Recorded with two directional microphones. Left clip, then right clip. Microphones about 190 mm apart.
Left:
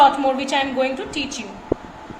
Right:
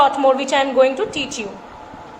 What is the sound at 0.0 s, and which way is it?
A woman's voice, 15° right (ahead or behind).